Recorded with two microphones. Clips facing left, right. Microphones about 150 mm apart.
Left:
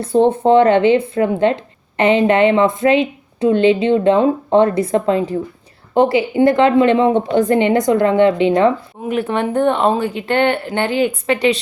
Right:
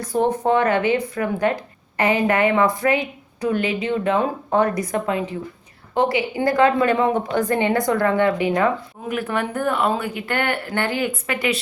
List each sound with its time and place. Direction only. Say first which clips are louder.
0.0 s speech: left 7 dB; 25° left (ahead or behind)